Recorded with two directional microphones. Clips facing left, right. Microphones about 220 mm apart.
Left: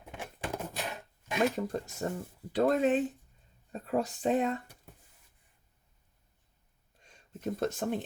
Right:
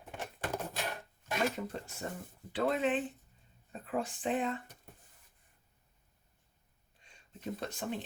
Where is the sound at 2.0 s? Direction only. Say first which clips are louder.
Left 6 dB; 45° left (ahead or behind).